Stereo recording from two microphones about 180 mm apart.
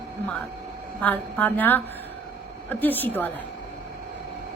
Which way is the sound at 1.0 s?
10° left (ahead or behind).